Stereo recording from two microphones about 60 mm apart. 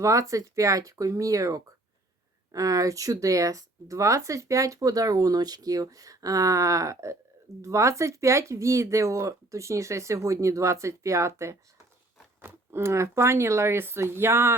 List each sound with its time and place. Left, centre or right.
0.0 s speech: right